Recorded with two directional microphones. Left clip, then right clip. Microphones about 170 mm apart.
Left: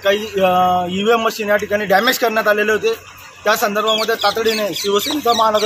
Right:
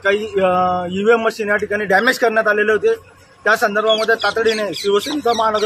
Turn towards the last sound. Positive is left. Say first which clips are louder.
# left 2 dB
turn(degrees=-10)  # may be behind; listen again after turning